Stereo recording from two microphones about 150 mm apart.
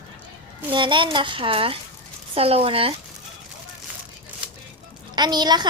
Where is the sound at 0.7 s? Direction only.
35° right (ahead or behind).